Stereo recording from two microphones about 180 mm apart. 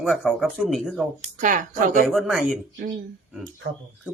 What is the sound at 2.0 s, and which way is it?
Speech, centre (ahead or behind).